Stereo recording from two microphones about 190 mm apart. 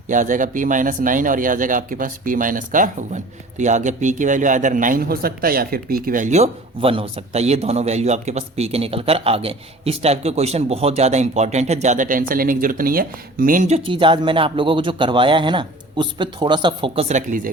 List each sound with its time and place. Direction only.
0.1 s a man's voice: 45° right (ahead or behind)